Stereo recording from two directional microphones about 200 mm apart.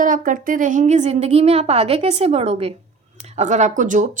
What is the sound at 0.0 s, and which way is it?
Speech, 40° right (ahead or behind).